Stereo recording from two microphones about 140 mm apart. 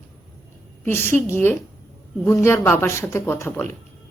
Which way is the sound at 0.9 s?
15° left (ahead or behind).